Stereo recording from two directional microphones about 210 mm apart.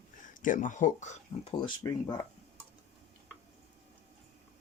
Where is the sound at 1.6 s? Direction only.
20° left (ahead or behind).